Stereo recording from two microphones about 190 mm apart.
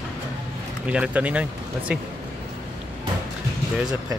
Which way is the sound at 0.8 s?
5° right (ahead or behind).